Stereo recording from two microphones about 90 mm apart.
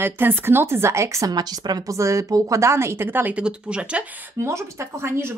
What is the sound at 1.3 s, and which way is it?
A woman's voice, 50° right (ahead or behind).